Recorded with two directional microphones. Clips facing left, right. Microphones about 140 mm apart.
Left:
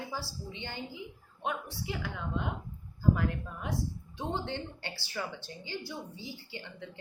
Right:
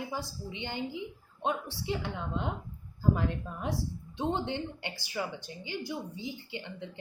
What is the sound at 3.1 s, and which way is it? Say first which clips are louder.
Speech: even; 25° right (ahead or behind).